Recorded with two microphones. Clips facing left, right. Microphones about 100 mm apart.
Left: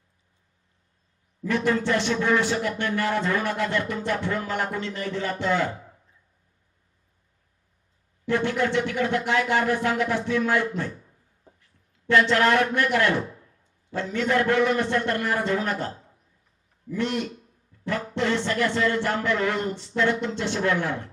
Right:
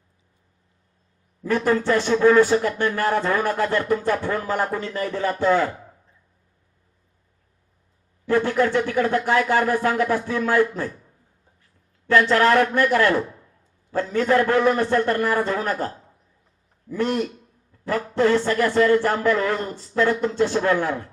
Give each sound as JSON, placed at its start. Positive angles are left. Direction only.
{"t": 1.5, "sound": "a man's voice", "side_deg": -40}
{"t": 8.3, "sound": "a man's voice", "side_deg": -40}
{"t": 12.3, "sound": "a man's voice", "side_deg": -40}
{"t": 16.9, "sound": "a man's voice", "side_deg": -40}